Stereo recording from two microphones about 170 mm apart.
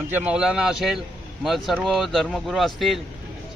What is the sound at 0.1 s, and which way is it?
A man's voice, 10° right (ahead or behind).